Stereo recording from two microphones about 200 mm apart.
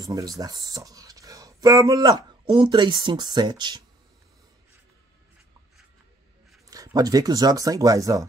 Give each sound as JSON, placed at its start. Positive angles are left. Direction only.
{"t": 0.0, "sound": "speech", "side_deg": -20}
{"t": 6.7, "sound": "speech", "side_deg": -15}